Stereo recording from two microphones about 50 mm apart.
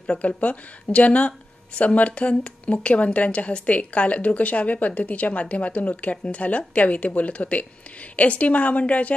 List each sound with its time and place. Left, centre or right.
0.0 s a woman's voice: left